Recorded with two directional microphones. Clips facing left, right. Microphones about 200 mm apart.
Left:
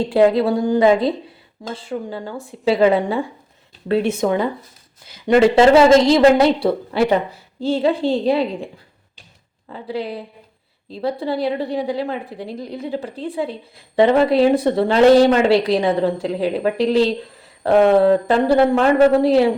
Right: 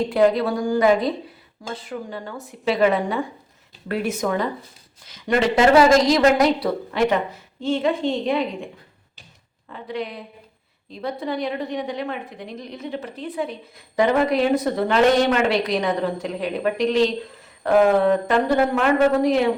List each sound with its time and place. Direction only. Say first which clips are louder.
0.1 s a woman's voice: left 5 dB; 25° left (ahead or behind)